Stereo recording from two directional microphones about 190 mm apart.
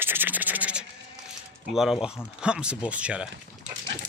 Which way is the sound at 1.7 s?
Centre (ahead or behind).